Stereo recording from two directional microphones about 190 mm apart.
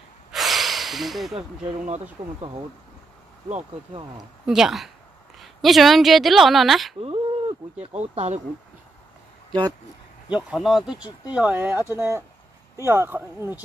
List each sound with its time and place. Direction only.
0.3 s snort: centre (ahead or behind)
1.9 s speech: 35° right (ahead or behind)
4.2 s a woman's voice: centre (ahead or behind)
7.0 s a sound: 30° right (ahead or behind)
8.0 s speech: 35° right (ahead or behind)
9.5 s speech: 20° right (ahead or behind)
10.3 s a woman's voice: centre (ahead or behind)